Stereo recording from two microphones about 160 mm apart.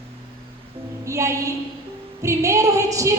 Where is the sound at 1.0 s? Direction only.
20° right (ahead or behind).